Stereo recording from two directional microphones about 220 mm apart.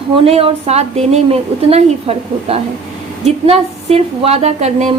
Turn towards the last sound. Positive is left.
turn(degrees=-30)  # may be behind; listen again after turning